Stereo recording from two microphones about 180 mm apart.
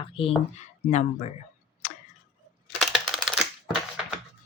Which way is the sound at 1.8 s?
40° left (ahead or behind).